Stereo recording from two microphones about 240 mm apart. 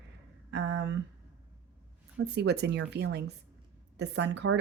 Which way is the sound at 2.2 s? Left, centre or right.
Right.